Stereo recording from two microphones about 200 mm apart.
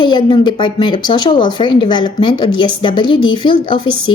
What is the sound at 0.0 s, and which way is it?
A woman's voice, 25° left (ahead or behind).